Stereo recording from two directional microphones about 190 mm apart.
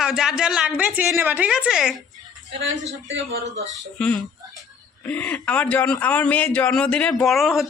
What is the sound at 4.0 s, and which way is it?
A man's voice, 5° left (ahead or behind).